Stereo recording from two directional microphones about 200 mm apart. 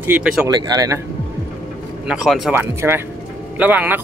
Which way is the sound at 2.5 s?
10° right (ahead or behind).